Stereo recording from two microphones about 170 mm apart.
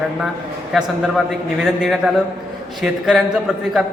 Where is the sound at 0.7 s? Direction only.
Centre (ahead or behind).